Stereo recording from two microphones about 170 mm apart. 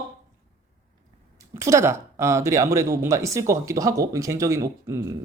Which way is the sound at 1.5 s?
15° right (ahead or behind).